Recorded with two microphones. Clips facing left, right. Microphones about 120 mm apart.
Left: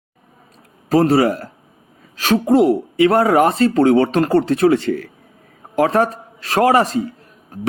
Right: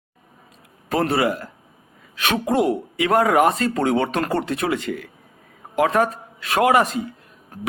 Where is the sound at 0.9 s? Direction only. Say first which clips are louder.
Left 6 dB; 35° left (ahead or behind).